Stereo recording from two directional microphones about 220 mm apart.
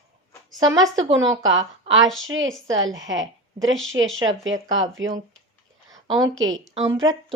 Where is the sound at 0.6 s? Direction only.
15° right (ahead or behind).